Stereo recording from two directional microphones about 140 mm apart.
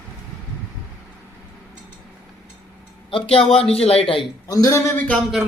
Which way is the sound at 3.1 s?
40° left (ahead or behind).